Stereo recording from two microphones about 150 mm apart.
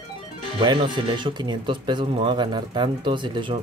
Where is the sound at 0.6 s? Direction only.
30° right (ahead or behind).